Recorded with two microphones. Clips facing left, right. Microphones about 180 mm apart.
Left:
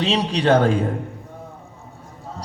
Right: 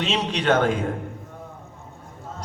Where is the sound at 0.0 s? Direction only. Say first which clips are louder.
Left 4 dB; 35° left (ahead or behind).